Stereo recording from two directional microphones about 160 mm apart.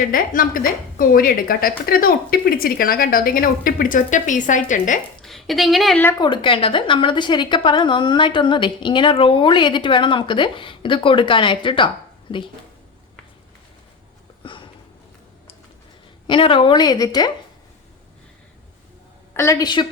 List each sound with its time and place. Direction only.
0.0 s a woman's voice: 60° left (ahead or behind)
5.2 s speech: centre (ahead or behind)
6.1 s a woman's voice: 30° left (ahead or behind)
14.4 s a sound: 30° left (ahead or behind)
16.2 s a woman's voice: 30° left (ahead or behind)
19.3 s a woman's voice: 15° left (ahead or behind)